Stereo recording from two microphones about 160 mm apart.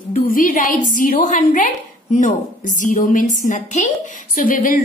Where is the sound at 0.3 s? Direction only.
60° left (ahead or behind).